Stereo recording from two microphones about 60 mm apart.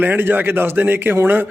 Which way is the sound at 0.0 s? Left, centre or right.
Right.